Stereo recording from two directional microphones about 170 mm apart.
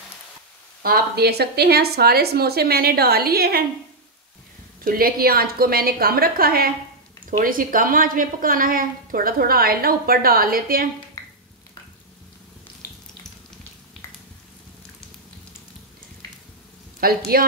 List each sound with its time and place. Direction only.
0.8 s a woman's voice: 65° right (ahead or behind)
4.8 s a woman's voice: 60° right (ahead or behind)
17.0 s a woman's voice: 60° right (ahead or behind)